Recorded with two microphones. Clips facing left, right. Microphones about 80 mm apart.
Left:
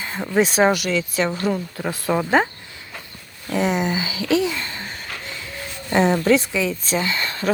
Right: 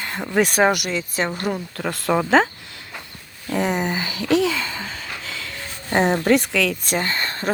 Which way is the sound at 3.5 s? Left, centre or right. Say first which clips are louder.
Left 1 dB; right.